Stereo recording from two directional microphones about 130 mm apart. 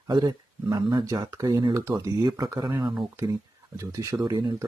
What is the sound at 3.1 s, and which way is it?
Speech, 25° right (ahead or behind).